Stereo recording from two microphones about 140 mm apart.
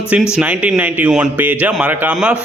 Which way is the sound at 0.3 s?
10° right (ahead or behind).